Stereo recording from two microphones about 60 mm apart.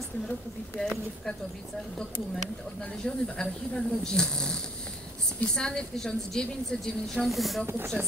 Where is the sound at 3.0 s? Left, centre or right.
Centre.